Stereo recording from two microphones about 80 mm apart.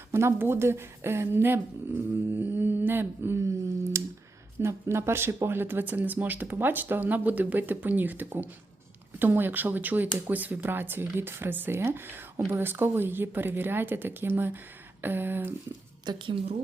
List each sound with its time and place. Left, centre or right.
0.1 s a woman's voice: right
2.3 s a sound: right
4.6 s speech: right
16.0 s a woman's voice: right